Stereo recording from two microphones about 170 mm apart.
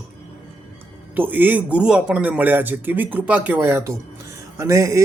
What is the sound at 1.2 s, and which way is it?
Speech, 10° right (ahead or behind).